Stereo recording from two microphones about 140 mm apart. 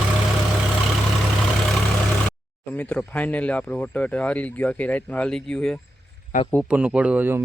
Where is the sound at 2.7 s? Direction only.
10° left (ahead or behind).